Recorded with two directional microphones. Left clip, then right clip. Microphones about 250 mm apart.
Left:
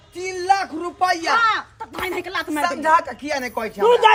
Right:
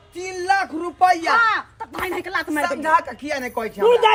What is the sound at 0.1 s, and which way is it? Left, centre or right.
Speech, centre.